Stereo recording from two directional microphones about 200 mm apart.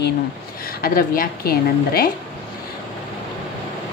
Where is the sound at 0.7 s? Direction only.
45° left (ahead or behind).